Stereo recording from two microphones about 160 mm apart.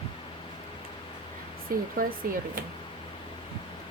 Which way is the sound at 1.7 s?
65° right (ahead or behind).